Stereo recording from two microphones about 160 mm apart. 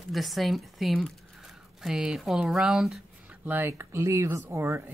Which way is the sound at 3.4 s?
15° right (ahead or behind).